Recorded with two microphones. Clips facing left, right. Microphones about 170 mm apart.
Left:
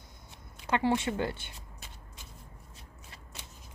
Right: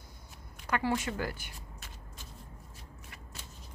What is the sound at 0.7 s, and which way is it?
Speech, 25° left (ahead or behind).